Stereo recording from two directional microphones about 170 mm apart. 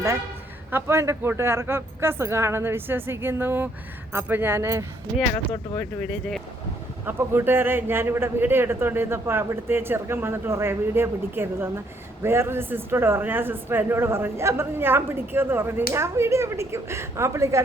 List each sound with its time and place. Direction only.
0.7 s a man's voice: 15° right (ahead or behind)
5.7 s speech: 10° left (ahead or behind)
7.0 s a man's voice: 15° right (ahead or behind)